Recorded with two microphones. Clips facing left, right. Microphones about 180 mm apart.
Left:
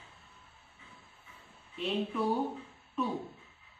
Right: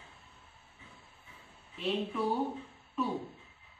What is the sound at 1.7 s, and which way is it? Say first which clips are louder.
Speech: even; centre (ahead or behind).